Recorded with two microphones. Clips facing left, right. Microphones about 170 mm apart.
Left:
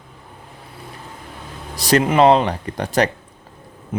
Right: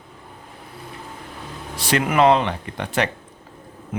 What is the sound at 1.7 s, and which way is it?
Speech, 40° left (ahead or behind).